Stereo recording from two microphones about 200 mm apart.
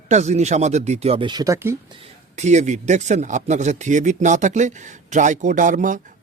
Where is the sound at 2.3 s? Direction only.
35° right (ahead or behind).